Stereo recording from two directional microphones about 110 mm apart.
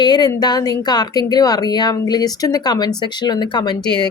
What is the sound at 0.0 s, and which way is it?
Speech, 40° left (ahead or behind).